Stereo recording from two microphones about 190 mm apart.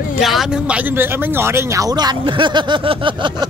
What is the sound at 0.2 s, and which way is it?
Speech, centre (ahead or behind).